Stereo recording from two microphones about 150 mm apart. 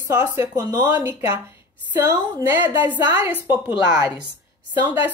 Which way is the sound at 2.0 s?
15° right (ahead or behind).